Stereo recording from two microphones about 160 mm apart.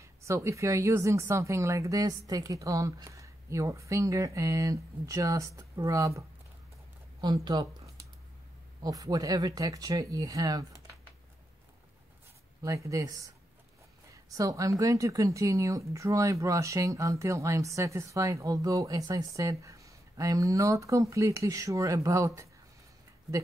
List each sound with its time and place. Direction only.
0.0 s a woman's voice: 20° right (ahead or behind)
12.6 s a woman's voice: 20° right (ahead or behind)